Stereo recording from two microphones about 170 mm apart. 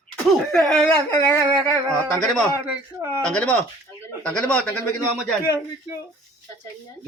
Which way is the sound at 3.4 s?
5° left (ahead or behind).